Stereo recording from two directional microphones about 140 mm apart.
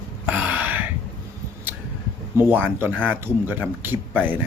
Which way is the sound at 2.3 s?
15° right (ahead or behind).